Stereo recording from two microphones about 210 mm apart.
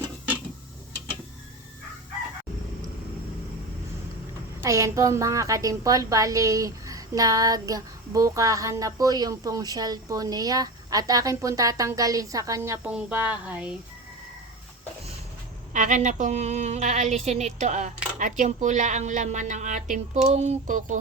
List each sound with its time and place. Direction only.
4.6 s a woman's voice: 15° right (ahead or behind)
15.7 s speech: 35° right (ahead or behind)